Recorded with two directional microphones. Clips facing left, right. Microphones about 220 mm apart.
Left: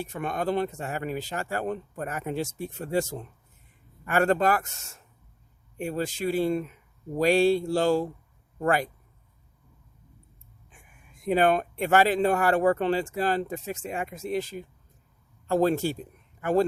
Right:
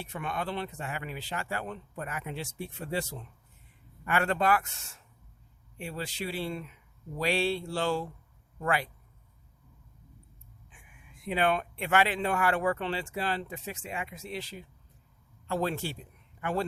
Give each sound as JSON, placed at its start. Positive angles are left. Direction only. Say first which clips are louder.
{"t": 0.0, "sound": "speech", "louder": "left 6 dB", "side_deg": 45}
{"t": 10.7, "sound": "speech", "louder": "left 3 dB", "side_deg": 45}